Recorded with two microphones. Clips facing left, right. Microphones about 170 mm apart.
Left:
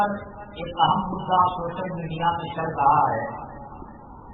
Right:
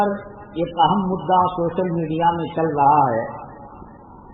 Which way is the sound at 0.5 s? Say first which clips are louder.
Right 5 dB; 50° right (ahead or behind).